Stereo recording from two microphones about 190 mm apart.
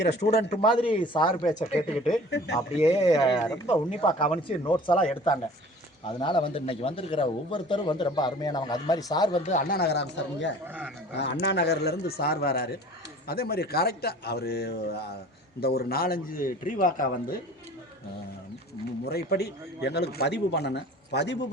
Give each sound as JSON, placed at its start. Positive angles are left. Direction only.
{"t": 0.2, "sound": "speech", "side_deg": 35}
{"t": 0.6, "sound": "speech", "side_deg": 25}
{"t": 1.5, "sound": "speech", "side_deg": 35}
{"t": 2.0, "sound": "speech", "side_deg": 0}
{"t": 3.1, "sound": "speech", "side_deg": 25}
{"t": 4.9, "sound": "speech", "side_deg": 20}
{"t": 9.5, "sound": "a man's voice", "side_deg": 45}
{"t": 19.0, "sound": "a man's voice", "side_deg": 55}